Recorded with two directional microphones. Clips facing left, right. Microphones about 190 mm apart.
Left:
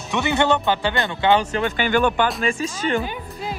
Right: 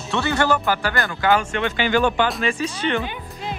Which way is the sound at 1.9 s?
50° left (ahead or behind).